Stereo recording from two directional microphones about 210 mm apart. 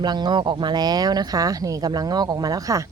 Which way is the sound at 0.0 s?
20° right (ahead or behind).